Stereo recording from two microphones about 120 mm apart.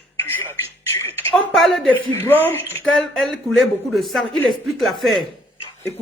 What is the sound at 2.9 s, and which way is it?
Speech, 5° left (ahead or behind).